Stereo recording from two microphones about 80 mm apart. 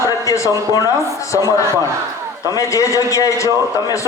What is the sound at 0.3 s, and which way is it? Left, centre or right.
Speech, left.